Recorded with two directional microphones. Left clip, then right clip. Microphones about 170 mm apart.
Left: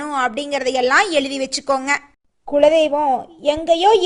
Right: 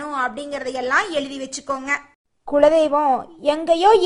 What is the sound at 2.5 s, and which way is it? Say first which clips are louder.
A woman's voice: left 1 dB; centre (ahead or behind).